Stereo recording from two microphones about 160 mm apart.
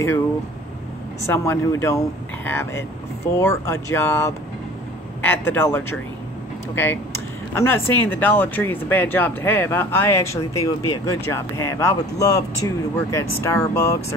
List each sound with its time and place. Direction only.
1.2 s speech: 15° left (ahead or behind)